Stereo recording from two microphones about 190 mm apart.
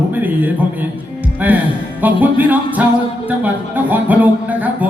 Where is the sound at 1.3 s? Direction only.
10° right (ahead or behind).